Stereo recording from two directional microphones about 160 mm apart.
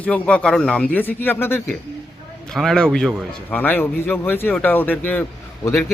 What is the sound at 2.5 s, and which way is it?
Speech, centre (ahead or behind).